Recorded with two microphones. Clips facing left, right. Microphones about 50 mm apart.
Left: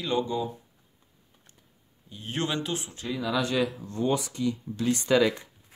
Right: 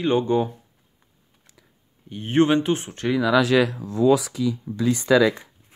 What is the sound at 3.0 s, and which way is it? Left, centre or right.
Speech, right.